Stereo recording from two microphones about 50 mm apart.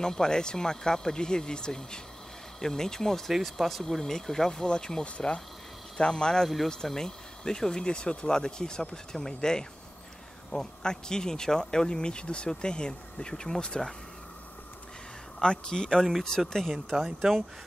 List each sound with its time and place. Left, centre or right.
0.0 s speech: centre
15.4 s speech: centre